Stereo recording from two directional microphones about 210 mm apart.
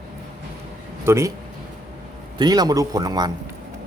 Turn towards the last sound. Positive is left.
turn(degrees=-20)  # may be behind; listen again after turning